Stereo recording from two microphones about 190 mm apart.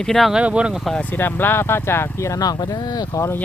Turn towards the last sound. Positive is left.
turn(degrees=15)  # may be behind; listen again after turning